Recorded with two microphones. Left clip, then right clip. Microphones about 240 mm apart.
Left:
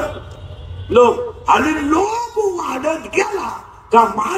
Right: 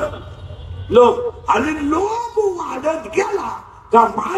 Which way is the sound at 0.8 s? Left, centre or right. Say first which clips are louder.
Even; left.